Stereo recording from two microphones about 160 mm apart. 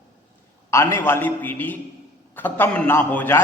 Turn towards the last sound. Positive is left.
turn(degrees=15)  # may be behind; listen again after turning